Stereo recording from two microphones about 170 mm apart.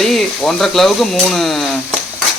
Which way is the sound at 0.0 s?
Centre (ahead or behind).